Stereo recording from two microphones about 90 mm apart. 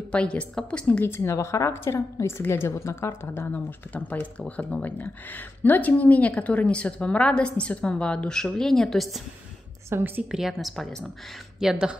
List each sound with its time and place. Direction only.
0.1 s a woman's voice: 10° left (ahead or behind)
9.8 s a woman's voice: 25° right (ahead or behind)
10.3 s a woman's voice: centre (ahead or behind)